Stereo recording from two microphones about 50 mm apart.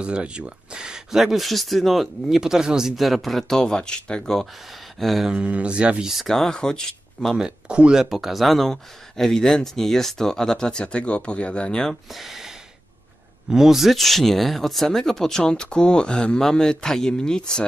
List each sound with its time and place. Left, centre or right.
0.0 s speech: right
3.0 s speech: centre
4.9 s a sound: centre
5.3 s speech: right
6.2 s speech: centre
7.3 s speech: centre
11.9 s speech: centre
13.5 s speech: centre